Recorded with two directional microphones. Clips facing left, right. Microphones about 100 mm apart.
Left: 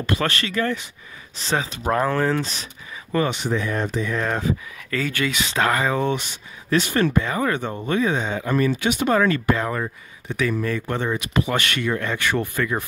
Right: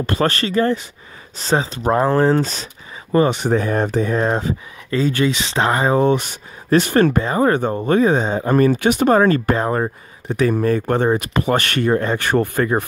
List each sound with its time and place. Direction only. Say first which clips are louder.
0.0 s speech: right 5 dB; 35° right (ahead or behind)
3.3 s speech: right 6 dB; 45° right (ahead or behind)
6.2 s speech: right 5 dB; 50° right (ahead or behind)